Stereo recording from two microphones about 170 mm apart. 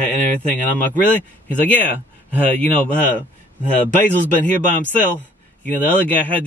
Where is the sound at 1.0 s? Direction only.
10° left (ahead or behind).